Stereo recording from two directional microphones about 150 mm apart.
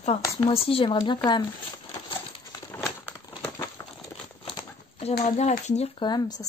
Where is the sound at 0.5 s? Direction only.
40° left (ahead or behind).